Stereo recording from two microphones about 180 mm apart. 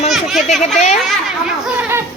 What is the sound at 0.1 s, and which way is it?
Children playing, centre (ahead or behind).